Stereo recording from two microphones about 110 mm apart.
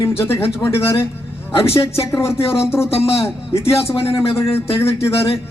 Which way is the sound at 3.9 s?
60° left (ahead or behind).